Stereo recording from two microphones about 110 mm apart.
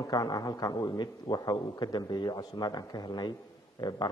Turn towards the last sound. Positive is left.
turn(degrees=40)  # may be behind; listen again after turning